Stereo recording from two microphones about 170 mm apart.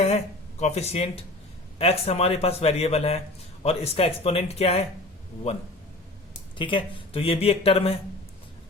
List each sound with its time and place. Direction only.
0.6 s speech: 40° left (ahead or behind)